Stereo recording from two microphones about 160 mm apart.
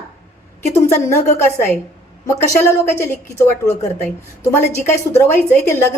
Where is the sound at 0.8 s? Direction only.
15° left (ahead or behind).